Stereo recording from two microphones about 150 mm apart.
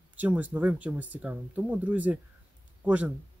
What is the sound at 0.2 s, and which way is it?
Speech, 10° right (ahead or behind).